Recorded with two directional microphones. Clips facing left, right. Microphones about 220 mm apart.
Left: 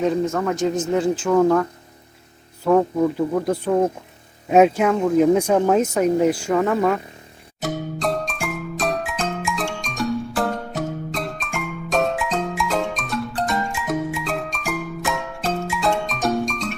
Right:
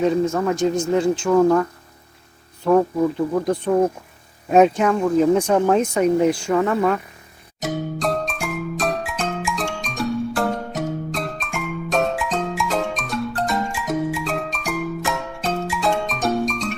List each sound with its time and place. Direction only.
0.0 s speech: centre (ahead or behind)
2.6 s speech: 5° left (ahead or behind)
7.6 s music: centre (ahead or behind)